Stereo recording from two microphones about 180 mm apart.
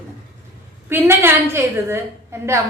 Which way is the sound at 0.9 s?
10° right (ahead or behind).